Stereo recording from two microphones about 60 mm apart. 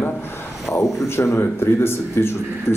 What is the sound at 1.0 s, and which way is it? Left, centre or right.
Speech, left.